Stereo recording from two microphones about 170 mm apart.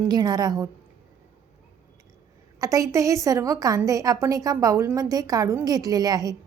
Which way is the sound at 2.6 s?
20° right (ahead or behind).